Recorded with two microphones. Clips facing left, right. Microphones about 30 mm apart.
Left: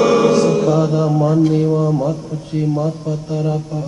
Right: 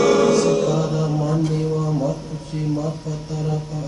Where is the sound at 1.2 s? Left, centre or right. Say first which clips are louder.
Left 7 dB; centre.